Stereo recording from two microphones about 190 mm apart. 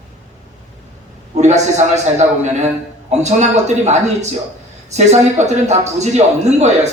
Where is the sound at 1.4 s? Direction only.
35° right (ahead or behind).